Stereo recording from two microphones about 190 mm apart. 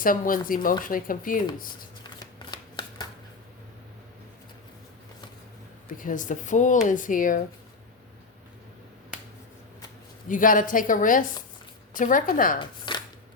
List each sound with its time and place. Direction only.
0.0 s speech: 45° left (ahead or behind)
2.1 s shuffling cards: 25° left (ahead or behind)
5.9 s speech: 45° left (ahead or behind)
10.2 s speech: 45° left (ahead or behind)
12.5 s a sound: 25° left (ahead or behind)